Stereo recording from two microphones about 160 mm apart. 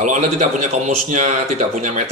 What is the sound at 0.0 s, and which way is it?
A man's voice, 50° right (ahead or behind).